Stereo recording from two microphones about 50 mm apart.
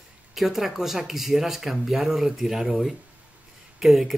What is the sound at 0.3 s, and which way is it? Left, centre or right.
Speech, centre.